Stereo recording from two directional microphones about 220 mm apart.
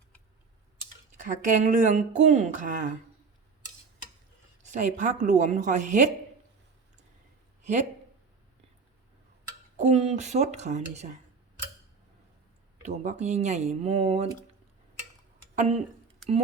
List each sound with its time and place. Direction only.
1.1 s a woman's voice: 35° right (ahead or behind)
4.6 s a woman's voice: 35° right (ahead or behind)
7.6 s speech: 35° right (ahead or behind)
9.7 s a woman's voice: 30° right (ahead or behind)
12.8 s a woman's voice: 30° right (ahead or behind)
15.5 s speech: 30° right (ahead or behind)